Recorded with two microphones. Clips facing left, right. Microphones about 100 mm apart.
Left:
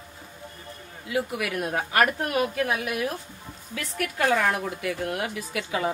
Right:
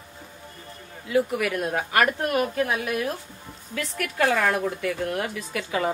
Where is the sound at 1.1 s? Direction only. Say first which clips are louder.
Right 4 dB; 40° right (ahead or behind).